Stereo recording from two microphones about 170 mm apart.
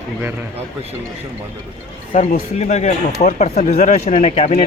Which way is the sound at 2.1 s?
50° left (ahead or behind).